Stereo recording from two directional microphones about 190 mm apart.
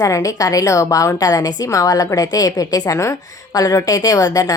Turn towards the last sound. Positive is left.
turn(degrees=20)  # may be behind; listen again after turning